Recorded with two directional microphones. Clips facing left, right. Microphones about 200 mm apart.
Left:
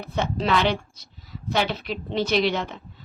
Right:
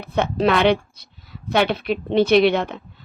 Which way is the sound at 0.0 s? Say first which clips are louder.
Right 6 dB; 60° right (ahead or behind).